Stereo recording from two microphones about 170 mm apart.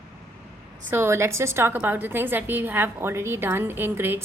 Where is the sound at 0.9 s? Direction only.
15° right (ahead or behind).